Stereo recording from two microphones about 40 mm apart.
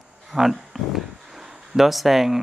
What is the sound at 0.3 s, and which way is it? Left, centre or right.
Speech, centre.